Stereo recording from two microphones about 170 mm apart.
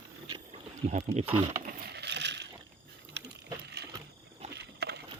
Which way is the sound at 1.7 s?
70° right (ahead or behind).